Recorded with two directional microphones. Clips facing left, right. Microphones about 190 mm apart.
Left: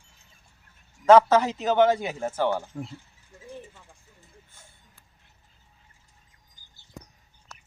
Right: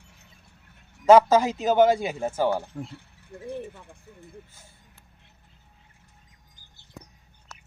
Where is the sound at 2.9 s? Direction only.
60° right (ahead or behind).